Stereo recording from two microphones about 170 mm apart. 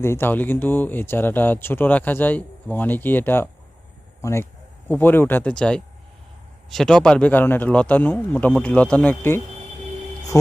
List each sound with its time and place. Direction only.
0.0 s speech: 15° left (ahead or behind)